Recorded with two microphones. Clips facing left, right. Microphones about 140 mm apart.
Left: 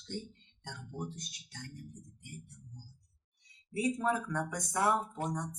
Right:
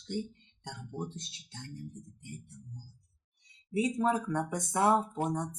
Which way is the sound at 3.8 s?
20° right (ahead or behind).